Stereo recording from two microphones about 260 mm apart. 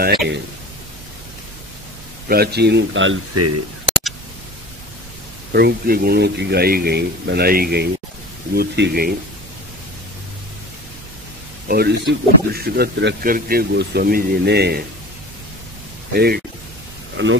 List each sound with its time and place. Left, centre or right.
2.2 s speech: right
3.3 s speech: right
5.5 s speech: right
11.6 s speech: right
16.1 s speech: right